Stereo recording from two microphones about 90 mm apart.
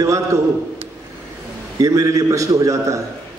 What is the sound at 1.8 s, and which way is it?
A man's voice, 40° right (ahead or behind).